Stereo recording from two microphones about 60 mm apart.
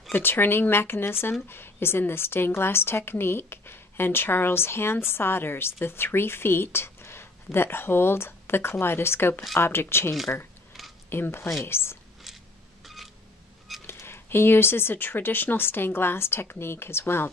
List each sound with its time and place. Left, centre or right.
0.1 s a woman's voice: left
12.8 s a sound: centre
13.8 s a woman's voice: left